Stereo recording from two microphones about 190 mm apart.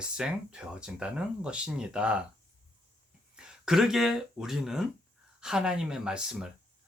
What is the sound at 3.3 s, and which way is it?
Speech, 5° right (ahead or behind).